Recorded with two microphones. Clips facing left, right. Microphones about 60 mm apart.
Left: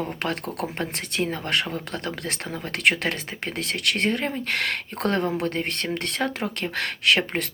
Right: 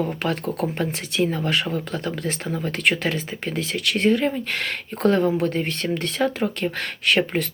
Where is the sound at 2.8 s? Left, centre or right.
Left.